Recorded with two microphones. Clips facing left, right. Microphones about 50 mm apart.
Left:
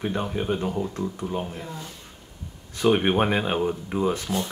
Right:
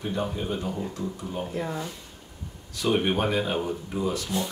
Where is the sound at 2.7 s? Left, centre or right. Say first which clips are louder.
Left 4 dB; left.